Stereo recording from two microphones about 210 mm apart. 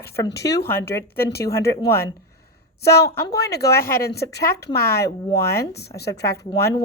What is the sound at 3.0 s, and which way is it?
Speech, 15° left (ahead or behind).